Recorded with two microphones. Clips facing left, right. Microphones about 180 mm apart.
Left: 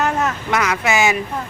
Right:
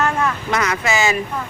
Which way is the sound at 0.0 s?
20° left (ahead or behind).